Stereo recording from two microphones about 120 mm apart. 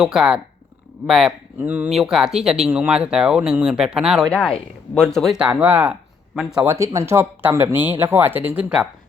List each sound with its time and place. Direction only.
0.0 s speech: 5° right (ahead or behind)
1.5 s speech: 15° right (ahead or behind)
4.3 s speech: 5° left (ahead or behind)
6.7 s speech: 25° right (ahead or behind); by 8.9 s 10° right (ahead or behind)